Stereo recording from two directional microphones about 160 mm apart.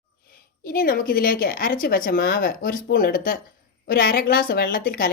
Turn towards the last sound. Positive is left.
turn(degrees=65)  # may be behind; listen again after turning